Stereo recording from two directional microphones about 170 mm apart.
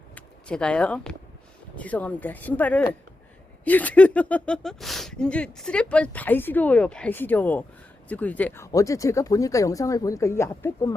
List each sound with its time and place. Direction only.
0.1 s speech: 5° left (ahead or behind)